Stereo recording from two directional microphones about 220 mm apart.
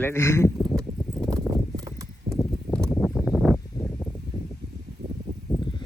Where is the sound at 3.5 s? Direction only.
10° left (ahead or behind).